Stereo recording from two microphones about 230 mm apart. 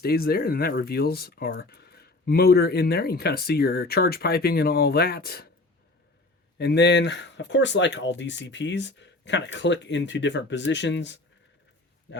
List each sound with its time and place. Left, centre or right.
0.0 s speech: left
6.6 s speech: left